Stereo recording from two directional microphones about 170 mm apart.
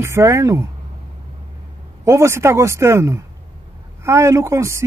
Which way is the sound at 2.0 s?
15° right (ahead or behind).